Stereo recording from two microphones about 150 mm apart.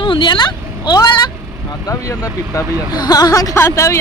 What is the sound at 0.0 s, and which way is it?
Vehicle, 35° left (ahead or behind).